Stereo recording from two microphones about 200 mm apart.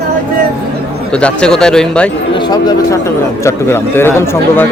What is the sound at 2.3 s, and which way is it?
A man's voice, 20° left (ahead or behind).